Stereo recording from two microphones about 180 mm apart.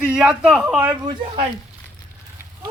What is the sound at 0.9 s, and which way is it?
Speech, 20° right (ahead or behind).